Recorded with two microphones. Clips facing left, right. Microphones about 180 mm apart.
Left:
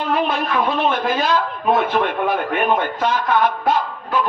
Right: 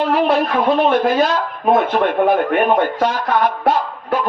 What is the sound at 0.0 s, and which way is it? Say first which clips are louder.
Speech: right 5 dB; 70° right (ahead or behind).